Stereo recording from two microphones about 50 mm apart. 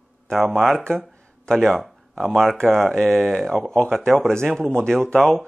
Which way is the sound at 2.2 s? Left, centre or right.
Centre.